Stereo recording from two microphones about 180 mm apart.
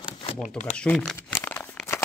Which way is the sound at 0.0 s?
25° left (ahead or behind).